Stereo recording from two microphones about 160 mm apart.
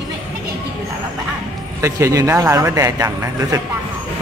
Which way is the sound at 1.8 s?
20° right (ahead or behind).